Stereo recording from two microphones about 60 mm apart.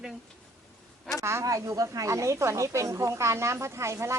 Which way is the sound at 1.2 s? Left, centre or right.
Right.